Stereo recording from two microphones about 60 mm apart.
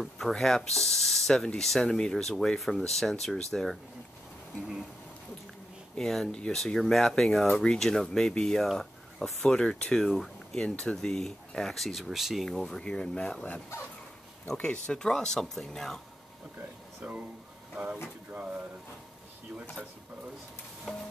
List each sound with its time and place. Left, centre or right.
0.2 s speech: centre
5.9 s speech: centre
12.4 s speech: centre
14.5 s speech: centre
17.0 s speech: right
18.3 s speech: right
20.9 s speech: centre